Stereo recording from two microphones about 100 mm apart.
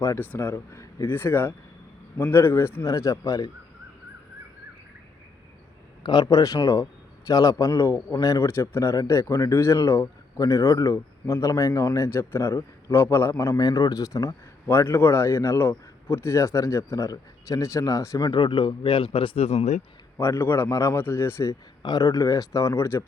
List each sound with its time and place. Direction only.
0.2 s speech: 20° left (ahead or behind)
6.0 s speech: 45° left (ahead or behind)
18.3 s speech: 50° left (ahead or behind); by 19.6 s 90° left
20.1 s speech: 25° left (ahead or behind)
21.8 s speech: 40° left (ahead or behind)